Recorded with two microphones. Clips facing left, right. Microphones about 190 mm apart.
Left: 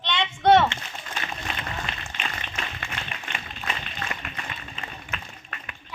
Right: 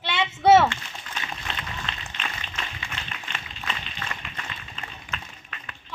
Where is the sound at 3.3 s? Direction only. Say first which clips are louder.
Left 2 dB; 55° left (ahead or behind).